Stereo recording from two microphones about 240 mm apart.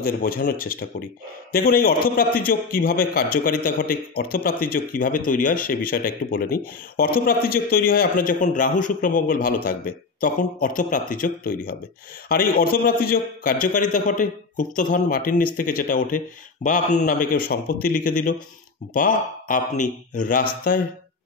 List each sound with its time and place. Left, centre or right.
0.0 s a man's voice: left